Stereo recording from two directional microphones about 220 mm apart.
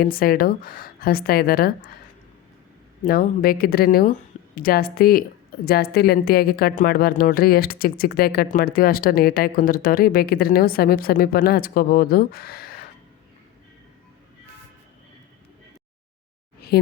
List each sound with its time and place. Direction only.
0.0 s speech: 40° left (ahead or behind)
3.1 s speech: 45° left (ahead or behind)
16.6 s a sound: 45° left (ahead or behind)